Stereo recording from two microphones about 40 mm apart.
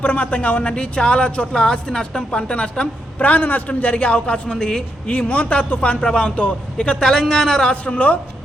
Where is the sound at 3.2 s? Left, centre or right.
Left.